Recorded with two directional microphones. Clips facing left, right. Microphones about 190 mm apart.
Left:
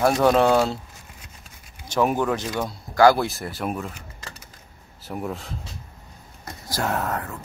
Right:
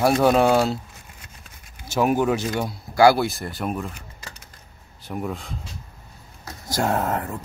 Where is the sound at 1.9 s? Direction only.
10° right (ahead or behind).